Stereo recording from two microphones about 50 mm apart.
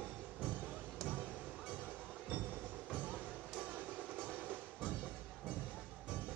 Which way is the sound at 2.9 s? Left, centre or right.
Right.